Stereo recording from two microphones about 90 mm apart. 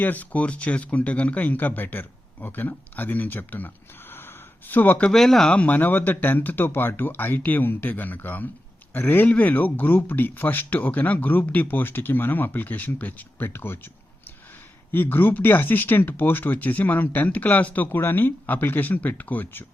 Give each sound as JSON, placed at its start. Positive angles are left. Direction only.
{"t": 0.0, "sound": "speech", "side_deg": 20}
{"t": 4.1, "sound": "gasp", "side_deg": 25}
{"t": 5.1, "sound": "speech", "side_deg": 5}
{"t": 15.1, "sound": "speech", "side_deg": 20}